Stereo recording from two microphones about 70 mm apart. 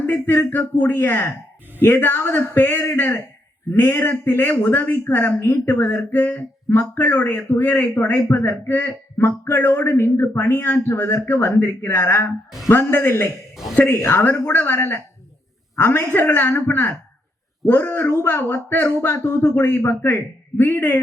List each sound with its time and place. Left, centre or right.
0.0 s a man's voice: left